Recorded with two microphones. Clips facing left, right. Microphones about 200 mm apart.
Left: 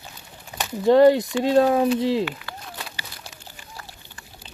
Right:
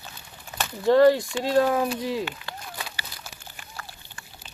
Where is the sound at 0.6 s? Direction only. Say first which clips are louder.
Left 3 dB; 20° left (ahead or behind).